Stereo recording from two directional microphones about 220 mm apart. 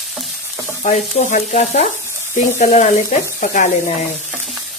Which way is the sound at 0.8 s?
35° left (ahead or behind).